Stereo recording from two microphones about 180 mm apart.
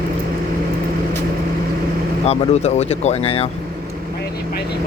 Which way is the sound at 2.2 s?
35° left (ahead or behind).